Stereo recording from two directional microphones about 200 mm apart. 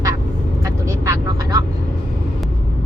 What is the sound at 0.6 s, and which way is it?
Vehicle, 15° right (ahead or behind).